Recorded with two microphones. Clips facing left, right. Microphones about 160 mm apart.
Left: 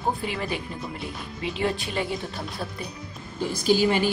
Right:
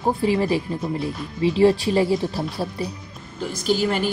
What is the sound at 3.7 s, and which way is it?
Speech, 5° left (ahead or behind).